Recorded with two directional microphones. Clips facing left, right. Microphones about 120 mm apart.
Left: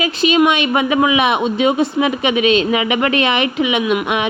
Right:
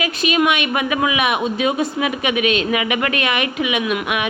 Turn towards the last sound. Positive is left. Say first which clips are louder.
# left 4 dB
turn(degrees=30)  # may be behind; listen again after turning